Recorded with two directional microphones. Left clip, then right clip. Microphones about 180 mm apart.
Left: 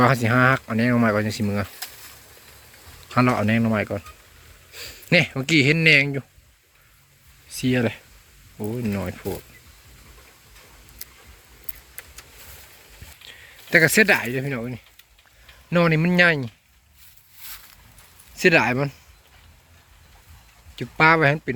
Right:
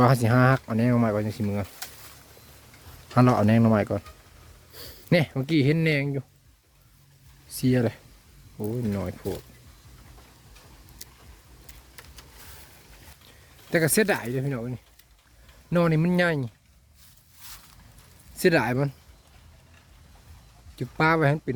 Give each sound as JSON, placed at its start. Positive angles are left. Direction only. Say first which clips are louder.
{"t": 0.0, "sound": "speech", "louder": "left 3 dB", "side_deg": -15}
{"t": 3.2, "sound": "speech", "louder": "left 1 dB", "side_deg": -15}
{"t": 7.5, "sound": "speech", "louder": "left 2 dB", "side_deg": -15}
{"t": 8.5, "sound": "speech", "louder": "left 2 dB", "side_deg": 0}
{"t": 13.2, "sound": "speech", "louder": "left 9 dB", "side_deg": 0}
{"t": 18.3, "sound": "speech", "louder": "left 5 dB", "side_deg": -5}
{"t": 21.0, "sound": "speech", "louder": "left 6 dB", "side_deg": -5}